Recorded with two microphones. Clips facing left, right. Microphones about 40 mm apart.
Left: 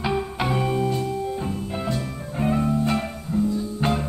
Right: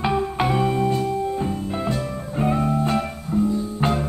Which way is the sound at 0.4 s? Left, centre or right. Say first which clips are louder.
Right 3 dB; centre.